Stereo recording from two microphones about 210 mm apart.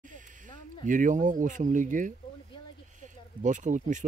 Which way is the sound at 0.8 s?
40° right (ahead or behind).